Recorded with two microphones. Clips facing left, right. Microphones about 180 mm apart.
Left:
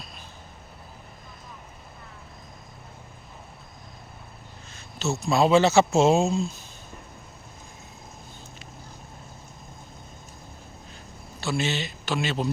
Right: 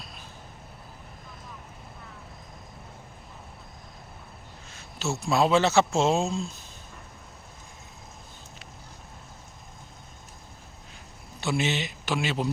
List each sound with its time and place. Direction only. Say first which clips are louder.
4.7 s speech: left 3 dB; 10° right (ahead or behind)
11.3 s a man's voice: even; 20° right (ahead or behind)